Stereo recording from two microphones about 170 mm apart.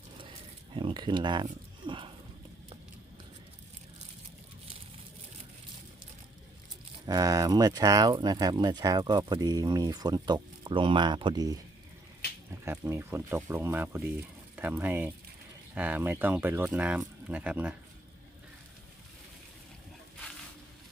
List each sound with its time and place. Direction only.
0.7 s speech: 30° right (ahead or behind)
7.1 s speech: 20° right (ahead or behind)
12.6 s speech: 15° right (ahead or behind)